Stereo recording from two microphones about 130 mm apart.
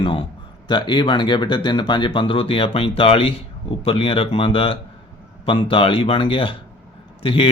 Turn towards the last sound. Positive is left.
turn(degrees=45)  # may be behind; listen again after turning